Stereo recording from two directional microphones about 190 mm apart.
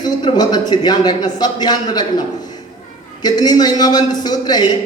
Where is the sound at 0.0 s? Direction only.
20° left (ahead or behind).